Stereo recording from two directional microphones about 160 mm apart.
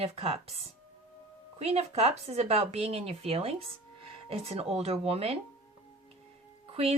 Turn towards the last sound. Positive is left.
turn(degrees=-35)  # may be behind; listen again after turning